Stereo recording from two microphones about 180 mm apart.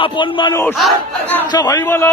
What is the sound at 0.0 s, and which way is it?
Speech, 25° left (ahead or behind).